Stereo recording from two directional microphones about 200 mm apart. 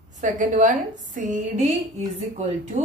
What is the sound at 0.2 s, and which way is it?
A woman's voice, 40° right (ahead or behind).